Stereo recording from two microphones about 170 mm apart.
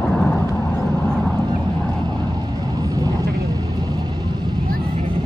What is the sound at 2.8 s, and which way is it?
Vehicle, 20° right (ahead or behind).